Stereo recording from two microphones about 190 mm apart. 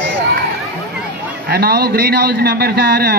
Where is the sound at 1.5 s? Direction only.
55° right (ahead or behind).